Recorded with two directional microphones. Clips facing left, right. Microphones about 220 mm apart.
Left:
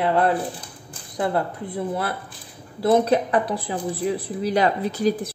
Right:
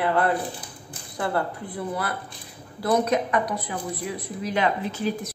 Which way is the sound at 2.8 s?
30° left (ahead or behind).